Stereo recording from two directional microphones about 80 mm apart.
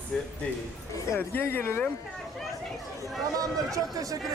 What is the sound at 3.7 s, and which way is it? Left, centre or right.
Speech, right.